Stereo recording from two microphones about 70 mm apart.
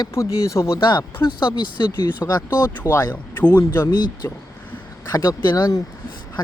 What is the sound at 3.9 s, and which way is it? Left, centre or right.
Speech, left.